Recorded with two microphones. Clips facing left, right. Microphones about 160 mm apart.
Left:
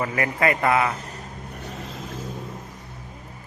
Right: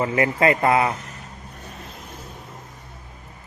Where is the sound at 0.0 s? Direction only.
25° right (ahead or behind).